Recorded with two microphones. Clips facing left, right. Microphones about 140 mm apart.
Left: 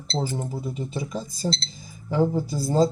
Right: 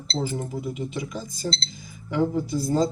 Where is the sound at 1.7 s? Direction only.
30° left (ahead or behind).